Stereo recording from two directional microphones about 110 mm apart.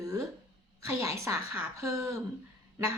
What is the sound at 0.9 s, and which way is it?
A woman's voice, 25° right (ahead or behind).